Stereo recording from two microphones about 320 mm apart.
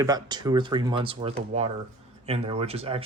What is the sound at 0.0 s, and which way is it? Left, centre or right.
Speech, centre.